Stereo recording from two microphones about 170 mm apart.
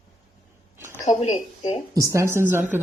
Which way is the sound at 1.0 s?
40° left (ahead or behind).